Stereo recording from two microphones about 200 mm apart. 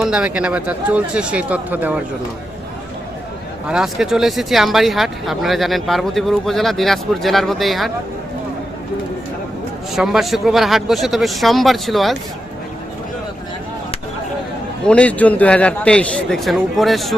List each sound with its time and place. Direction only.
0.0 s speech: 5° right (ahead or behind)
3.7 s speech: 5° right (ahead or behind)
9.9 s speech: centre (ahead or behind)
14.8 s speech: 5° left (ahead or behind)